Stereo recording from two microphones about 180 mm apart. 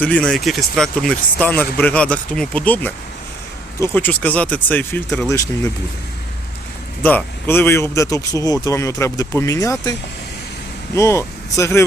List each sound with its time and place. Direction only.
0.0 s speech: 5° left (ahead or behind)
7.0 s speech: 10° left (ahead or behind)
10.9 s speech: 15° left (ahead or behind)